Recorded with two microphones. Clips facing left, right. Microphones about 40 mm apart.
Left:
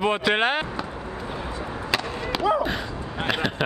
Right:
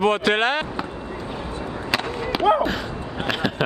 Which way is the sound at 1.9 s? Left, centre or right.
Centre.